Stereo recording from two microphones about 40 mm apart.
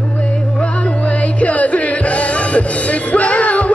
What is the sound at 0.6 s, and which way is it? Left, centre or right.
Music, left.